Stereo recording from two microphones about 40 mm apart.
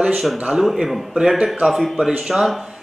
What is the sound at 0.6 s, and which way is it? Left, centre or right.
Speech, centre.